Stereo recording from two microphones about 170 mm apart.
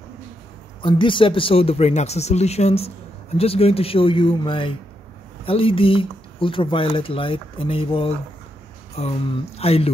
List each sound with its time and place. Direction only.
0.8 s speech: 30° left (ahead or behind)